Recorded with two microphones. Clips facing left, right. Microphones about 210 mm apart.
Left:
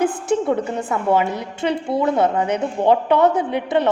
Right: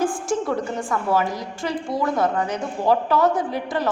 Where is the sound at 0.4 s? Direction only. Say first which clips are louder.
Left 4 dB; 25° left (ahead or behind).